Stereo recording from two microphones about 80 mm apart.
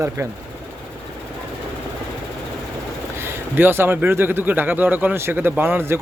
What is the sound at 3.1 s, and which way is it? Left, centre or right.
Speech, right.